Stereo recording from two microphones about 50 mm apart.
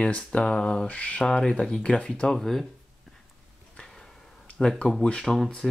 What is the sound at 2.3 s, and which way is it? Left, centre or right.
Speech, centre.